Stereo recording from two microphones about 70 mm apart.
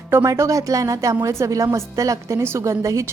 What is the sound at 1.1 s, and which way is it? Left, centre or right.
Speech, right.